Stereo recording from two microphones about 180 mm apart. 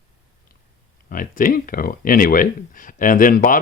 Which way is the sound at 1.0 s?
50° left (ahead or behind).